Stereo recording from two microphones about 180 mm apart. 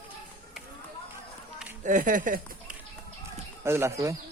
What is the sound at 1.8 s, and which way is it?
Speech, 45° right (ahead or behind).